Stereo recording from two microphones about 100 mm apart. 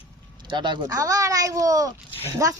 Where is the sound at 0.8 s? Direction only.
35° right (ahead or behind).